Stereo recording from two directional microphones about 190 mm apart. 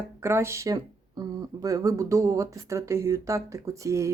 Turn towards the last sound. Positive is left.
turn(degrees=-15)  # may be behind; listen again after turning